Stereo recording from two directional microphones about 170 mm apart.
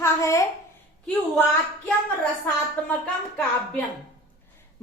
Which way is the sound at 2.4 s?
10° left (ahead or behind).